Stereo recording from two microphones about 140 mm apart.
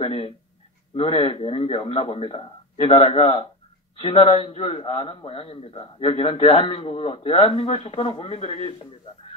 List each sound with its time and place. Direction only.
0.0 s a man's voice: 40° left (ahead or behind)